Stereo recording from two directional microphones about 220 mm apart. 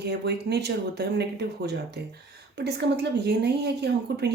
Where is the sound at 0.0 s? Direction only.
50° right (ahead or behind).